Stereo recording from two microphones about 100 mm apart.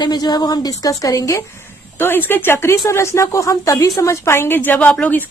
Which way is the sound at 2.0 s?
20° left (ahead or behind).